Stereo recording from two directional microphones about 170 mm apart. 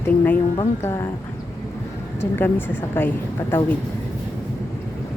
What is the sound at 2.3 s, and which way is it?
Speech, 10° left (ahead or behind).